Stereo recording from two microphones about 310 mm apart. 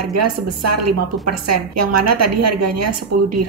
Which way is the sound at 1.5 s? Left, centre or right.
Right.